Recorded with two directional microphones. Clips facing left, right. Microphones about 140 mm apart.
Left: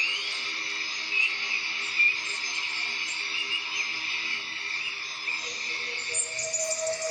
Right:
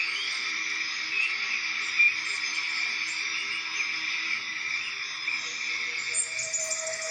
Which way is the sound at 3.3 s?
20° left (ahead or behind).